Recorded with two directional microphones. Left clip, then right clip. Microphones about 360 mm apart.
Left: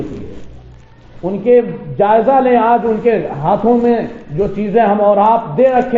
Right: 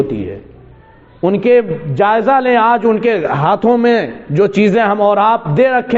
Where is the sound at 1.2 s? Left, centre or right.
Right.